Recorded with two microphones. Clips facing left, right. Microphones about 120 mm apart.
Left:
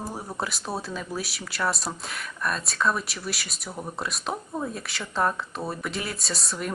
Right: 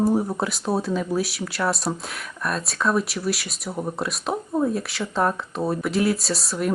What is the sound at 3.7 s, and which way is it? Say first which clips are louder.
Speech: right 7 dB; 20° right (ahead or behind).